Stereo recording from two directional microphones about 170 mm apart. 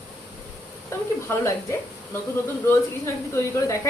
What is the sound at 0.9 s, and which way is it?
Speech, 15° left (ahead or behind).